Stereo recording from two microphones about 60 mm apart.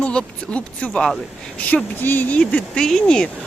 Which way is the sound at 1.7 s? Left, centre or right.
Left.